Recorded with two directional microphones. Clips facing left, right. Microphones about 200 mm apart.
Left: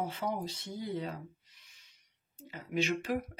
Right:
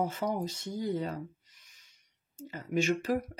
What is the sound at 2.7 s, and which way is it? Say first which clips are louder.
Speech: right 3 dB; 45° right (ahead or behind).